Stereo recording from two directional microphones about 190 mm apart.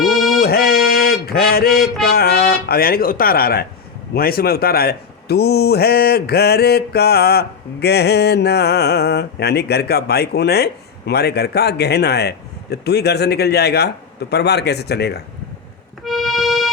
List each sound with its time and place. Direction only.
0.1 s music: centre (ahead or behind)
0.3 s music: 55° left (ahead or behind)
4.1 s a man's voice: 50° left (ahead or behind)
16.0 s music: centre (ahead or behind)